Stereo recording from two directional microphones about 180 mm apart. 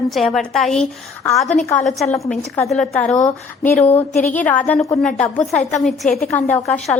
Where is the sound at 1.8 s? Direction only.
Centre (ahead or behind).